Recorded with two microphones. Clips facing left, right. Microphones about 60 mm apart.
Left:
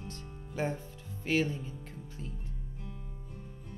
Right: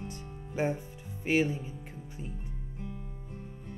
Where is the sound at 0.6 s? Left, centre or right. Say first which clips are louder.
Right 3 dB; centre.